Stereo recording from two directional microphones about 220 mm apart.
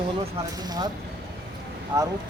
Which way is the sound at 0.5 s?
20° right (ahead or behind).